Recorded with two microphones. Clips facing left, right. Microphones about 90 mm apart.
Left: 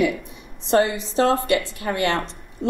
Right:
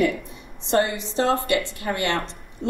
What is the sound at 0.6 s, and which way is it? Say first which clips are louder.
A woman's voice: left 3 dB; 20° left (ahead or behind).